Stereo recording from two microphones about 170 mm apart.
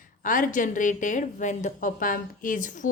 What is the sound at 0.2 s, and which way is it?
A woman's voice, 50° left (ahead or behind).